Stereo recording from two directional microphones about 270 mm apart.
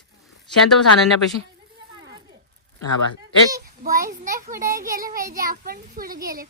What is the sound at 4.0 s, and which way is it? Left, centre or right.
A child's voice, right.